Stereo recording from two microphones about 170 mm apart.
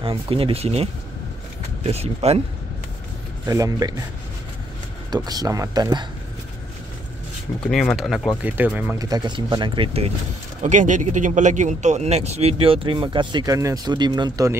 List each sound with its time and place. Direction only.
0.0 s speech: 30° right (ahead or behind)
3.4 s speech: 20° right (ahead or behind)
5.1 s speech: 25° right (ahead or behind)
7.6 s speech: 5° left (ahead or behind)
8.9 s speech: 20° right (ahead or behind)
10.6 s speech: 45° right (ahead or behind); by 14.6 s 20° right (ahead or behind)